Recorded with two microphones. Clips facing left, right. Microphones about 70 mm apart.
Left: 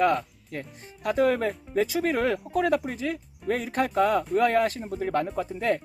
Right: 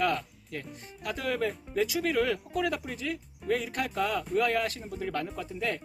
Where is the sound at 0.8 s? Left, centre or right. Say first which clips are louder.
Left 15 dB; left.